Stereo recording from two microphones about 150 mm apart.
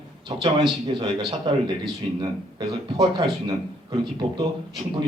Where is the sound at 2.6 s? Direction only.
30° right (ahead or behind).